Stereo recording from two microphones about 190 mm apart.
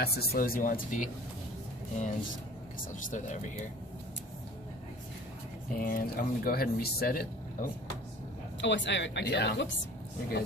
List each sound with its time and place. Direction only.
0.0 s speech: 55° left (ahead or behind)
2.9 s speech: 40° left (ahead or behind)
5.7 s speech: 50° left (ahead or behind)
8.5 s speech: 70° left (ahead or behind)